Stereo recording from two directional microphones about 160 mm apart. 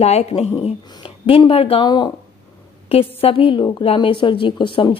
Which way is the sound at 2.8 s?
35° left (ahead or behind).